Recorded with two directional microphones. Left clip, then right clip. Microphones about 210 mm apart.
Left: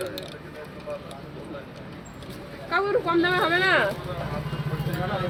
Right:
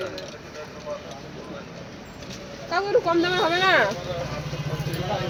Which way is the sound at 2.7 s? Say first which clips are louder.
Right 2 dB; 20° right (ahead or behind).